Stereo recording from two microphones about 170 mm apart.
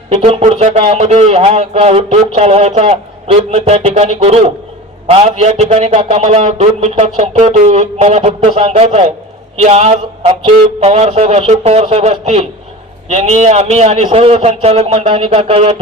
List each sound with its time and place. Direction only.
0.1 s a man's voice: 35° right (ahead or behind)